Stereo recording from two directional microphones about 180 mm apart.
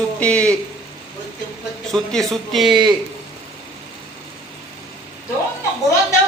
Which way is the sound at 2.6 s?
25° right (ahead or behind).